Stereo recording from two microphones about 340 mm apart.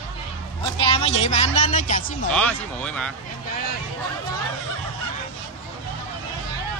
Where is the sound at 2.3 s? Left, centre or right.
Centre.